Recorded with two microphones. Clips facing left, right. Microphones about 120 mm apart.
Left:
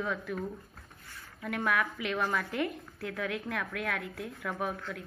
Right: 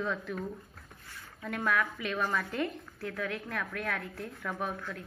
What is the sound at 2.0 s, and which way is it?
A woman's voice, 15° left (ahead or behind).